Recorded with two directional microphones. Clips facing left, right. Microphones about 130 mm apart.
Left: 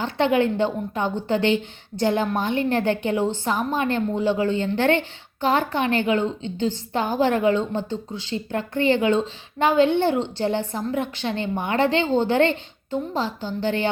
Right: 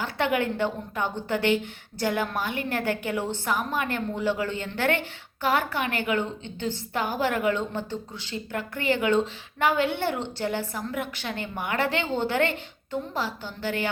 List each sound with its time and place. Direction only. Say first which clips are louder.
0.0 s a woman's voice: left 6 dB; 25° left (ahead or behind)